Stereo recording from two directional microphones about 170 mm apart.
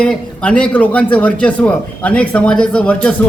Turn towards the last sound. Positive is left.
turn(degrees=5)  # may be behind; listen again after turning